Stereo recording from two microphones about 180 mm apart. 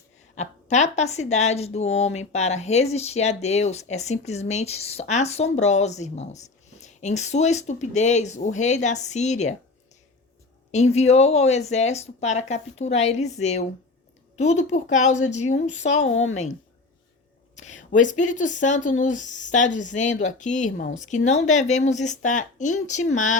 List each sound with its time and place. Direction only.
0.3 s speech: 40° left (ahead or behind)
10.7 s speech: 40° left (ahead or behind)
17.5 s speech: 40° left (ahead or behind)